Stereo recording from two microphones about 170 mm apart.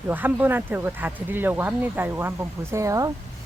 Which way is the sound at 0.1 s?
10° right (ahead or behind).